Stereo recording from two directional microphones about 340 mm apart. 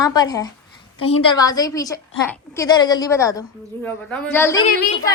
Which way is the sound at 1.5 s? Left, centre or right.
Centre.